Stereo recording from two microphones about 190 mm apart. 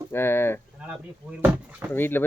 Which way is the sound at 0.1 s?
10° left (ahead or behind).